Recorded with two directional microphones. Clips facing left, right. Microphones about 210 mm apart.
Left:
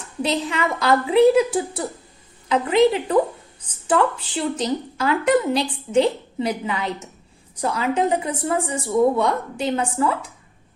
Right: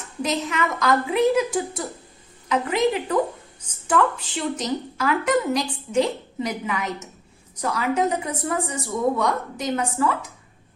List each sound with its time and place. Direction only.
0.2 s a woman's voice: 30° left (ahead or behind)